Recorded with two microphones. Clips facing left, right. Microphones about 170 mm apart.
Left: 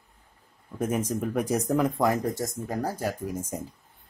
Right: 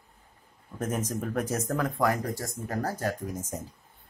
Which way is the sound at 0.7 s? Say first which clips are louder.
Left 4 dB; 10° left (ahead or behind).